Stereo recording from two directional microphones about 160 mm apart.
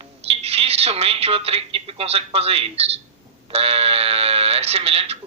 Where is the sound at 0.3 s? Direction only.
40° right (ahead or behind).